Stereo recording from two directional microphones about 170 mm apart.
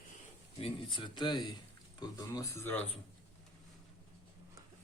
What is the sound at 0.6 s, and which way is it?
Speech, 30° left (ahead or behind).